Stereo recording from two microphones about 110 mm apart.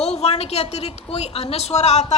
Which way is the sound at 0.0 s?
75° left (ahead or behind).